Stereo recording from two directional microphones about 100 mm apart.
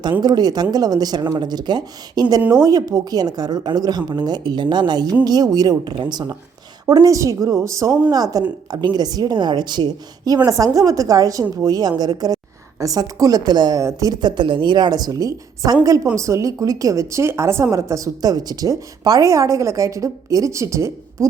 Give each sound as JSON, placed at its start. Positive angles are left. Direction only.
{"t": 0.2, "sound": "speech", "side_deg": -45}